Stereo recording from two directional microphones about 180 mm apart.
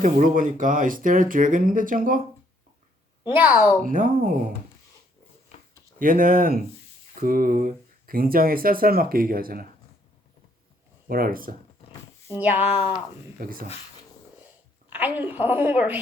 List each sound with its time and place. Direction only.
0.0 s speech: 45° right (ahead or behind)
3.2 s a woman's voice: 10° right (ahead or behind)
3.8 s speech: 50° right (ahead or behind)
6.0 s speech: 50° right (ahead or behind)
11.1 s speech: 55° right (ahead or behind)
12.5 s speech: 35° left (ahead or behind)
13.4 s speech: 50° right (ahead or behind)
14.8 s a woman's voice: 10° right (ahead or behind)